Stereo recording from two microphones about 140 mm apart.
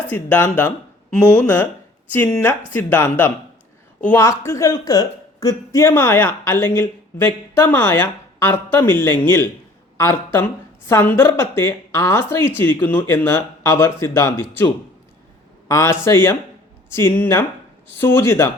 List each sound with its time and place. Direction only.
0.1 s a woman's voice: 15° left (ahead or behind)
15.7 s a woman's voice: 20° left (ahead or behind)